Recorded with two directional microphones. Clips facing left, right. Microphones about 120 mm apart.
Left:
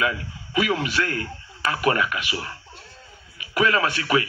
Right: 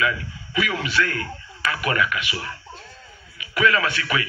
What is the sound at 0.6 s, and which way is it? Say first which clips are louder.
Speech: left 1 dB; 45° left (ahead or behind).